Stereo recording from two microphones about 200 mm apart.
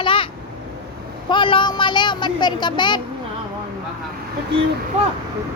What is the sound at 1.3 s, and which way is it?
Speech, 25° left (ahead or behind).